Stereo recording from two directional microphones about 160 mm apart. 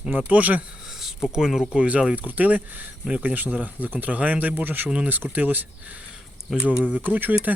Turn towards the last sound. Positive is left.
turn(degrees=-10)  # may be behind; listen again after turning